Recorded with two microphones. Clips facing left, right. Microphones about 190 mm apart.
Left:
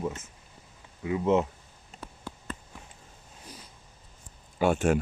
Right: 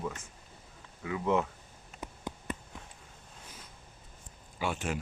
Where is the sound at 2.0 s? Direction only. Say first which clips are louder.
Right 2 dB; 15° right (ahead or behind).